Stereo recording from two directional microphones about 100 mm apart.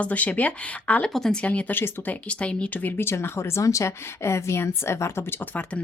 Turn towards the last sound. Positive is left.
turn(degrees=20)  # may be behind; listen again after turning